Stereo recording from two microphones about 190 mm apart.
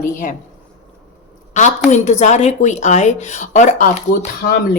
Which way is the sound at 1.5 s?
40° left (ahead or behind).